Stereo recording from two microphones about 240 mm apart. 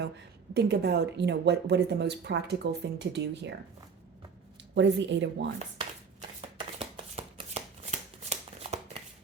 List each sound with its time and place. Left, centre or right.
0.5 s speech: right
4.7 s speech: right
6.7 s shuffling cards: right